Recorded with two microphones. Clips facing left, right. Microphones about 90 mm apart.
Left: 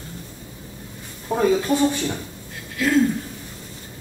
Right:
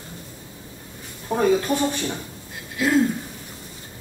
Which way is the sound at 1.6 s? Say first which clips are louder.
Left 3 dB; 15° right (ahead or behind).